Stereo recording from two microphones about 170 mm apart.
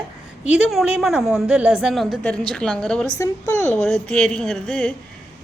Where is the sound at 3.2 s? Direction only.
15° left (ahead or behind).